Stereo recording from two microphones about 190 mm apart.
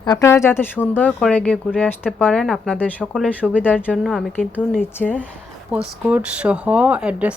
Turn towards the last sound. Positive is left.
turn(degrees=-5)  # may be behind; listen again after turning